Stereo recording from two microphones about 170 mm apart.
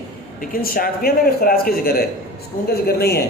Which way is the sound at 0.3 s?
60° left (ahead or behind).